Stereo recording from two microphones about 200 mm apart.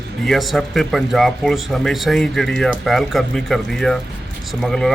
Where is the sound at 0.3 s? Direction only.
Centre (ahead or behind).